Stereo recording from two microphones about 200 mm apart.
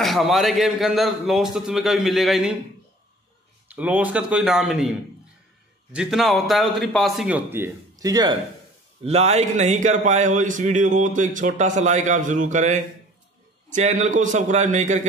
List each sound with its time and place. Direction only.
0.0 s a man's voice: centre (ahead or behind)
3.7 s a man's voice: 10° right (ahead or behind)
5.9 s a man's voice: centre (ahead or behind); by 8.4 s 20° right (ahead or behind)
9.0 s a man's voice: 30° right (ahead or behind)